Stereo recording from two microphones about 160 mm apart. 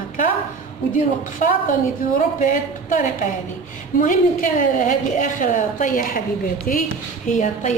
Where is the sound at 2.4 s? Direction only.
55° left (ahead or behind).